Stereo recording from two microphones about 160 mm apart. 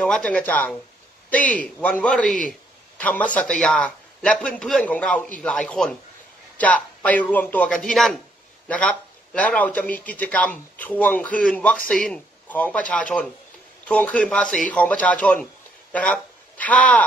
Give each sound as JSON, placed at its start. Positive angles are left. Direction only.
{"t": 0.0, "sound": "a man's voice", "side_deg": 5}